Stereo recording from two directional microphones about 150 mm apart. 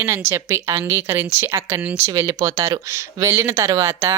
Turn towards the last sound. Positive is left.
turn(degrees=-20)  # may be behind; listen again after turning